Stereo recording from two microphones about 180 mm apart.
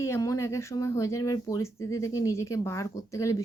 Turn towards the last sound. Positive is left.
turn(degrees=15)  # may be behind; listen again after turning